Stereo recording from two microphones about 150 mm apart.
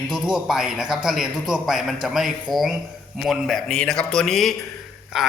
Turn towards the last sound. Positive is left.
turn(degrees=-5)  # may be behind; listen again after turning